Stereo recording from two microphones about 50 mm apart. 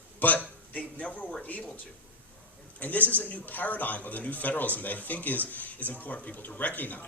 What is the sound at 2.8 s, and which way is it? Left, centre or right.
A man's voice, left.